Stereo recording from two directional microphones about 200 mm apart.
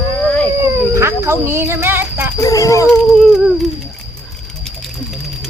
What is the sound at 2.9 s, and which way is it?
Speech, centre (ahead or behind).